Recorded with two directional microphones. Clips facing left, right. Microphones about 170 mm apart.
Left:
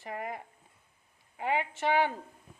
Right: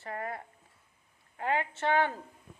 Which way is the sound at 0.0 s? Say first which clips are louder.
Even; 15° left (ahead or behind).